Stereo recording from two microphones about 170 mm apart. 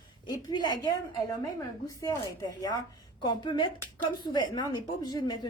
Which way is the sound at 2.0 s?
20° left (ahead or behind).